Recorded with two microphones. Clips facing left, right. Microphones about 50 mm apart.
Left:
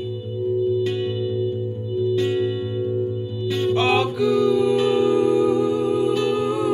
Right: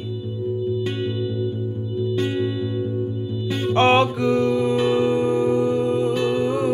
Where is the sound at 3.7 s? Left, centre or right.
Right.